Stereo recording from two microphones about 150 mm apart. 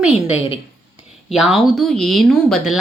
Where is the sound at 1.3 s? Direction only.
Centre (ahead or behind).